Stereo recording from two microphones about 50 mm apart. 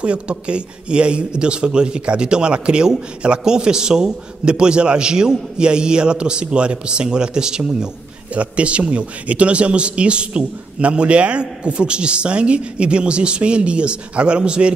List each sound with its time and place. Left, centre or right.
0.0 s a man's voice: right